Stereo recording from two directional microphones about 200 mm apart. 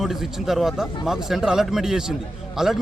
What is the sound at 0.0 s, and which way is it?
Speech, centre (ahead or behind).